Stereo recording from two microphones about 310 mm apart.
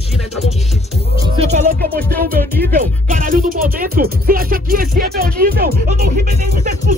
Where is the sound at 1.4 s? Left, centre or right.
Right.